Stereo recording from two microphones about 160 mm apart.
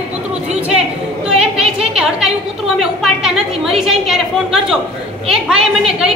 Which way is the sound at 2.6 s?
5° right (ahead or behind).